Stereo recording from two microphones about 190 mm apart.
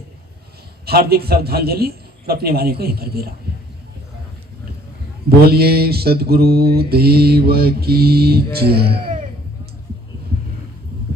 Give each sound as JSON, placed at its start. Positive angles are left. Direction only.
{"t": 0.9, "sound": "mantra", "side_deg": -55}
{"t": 5.5, "sound": "mantra", "side_deg": -55}